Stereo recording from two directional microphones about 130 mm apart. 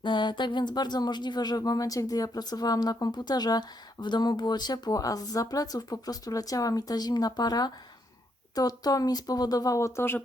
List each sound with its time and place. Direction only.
0.0 s speech: 35° left (ahead or behind); by 10.2 s 20° left (ahead or behind)